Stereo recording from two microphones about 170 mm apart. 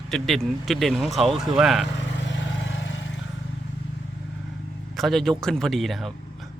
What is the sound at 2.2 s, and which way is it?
Vehicle, 90° left.